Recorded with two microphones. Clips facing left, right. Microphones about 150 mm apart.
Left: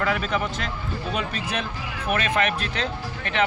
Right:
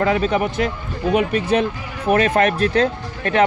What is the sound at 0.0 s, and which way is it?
Speech, 30° right (ahead or behind).